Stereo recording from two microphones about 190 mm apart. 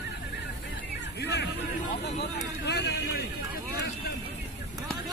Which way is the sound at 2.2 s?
60° left (ahead or behind).